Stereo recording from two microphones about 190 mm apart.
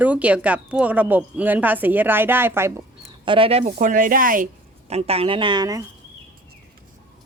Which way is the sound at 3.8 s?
45° right (ahead or behind).